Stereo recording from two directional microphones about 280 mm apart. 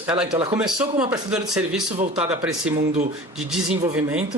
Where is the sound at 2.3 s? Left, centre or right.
Centre.